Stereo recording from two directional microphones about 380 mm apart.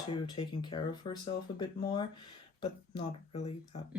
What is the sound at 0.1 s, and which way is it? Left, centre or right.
Speech, centre.